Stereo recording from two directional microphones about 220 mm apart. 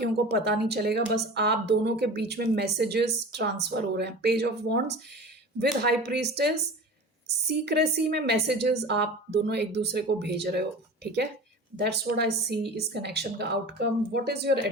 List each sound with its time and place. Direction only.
0.0 s a woman's voice: 45° right (ahead or behind)
7.4 s a woman's voice: 50° right (ahead or behind)